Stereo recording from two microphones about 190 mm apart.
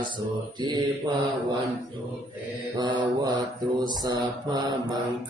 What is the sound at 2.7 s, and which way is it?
Mantra, 20° right (ahead or behind).